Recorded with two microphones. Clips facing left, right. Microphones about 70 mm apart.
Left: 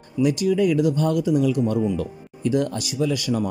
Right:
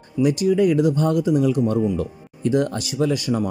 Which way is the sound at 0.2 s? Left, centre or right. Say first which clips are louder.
Right 2 dB; right.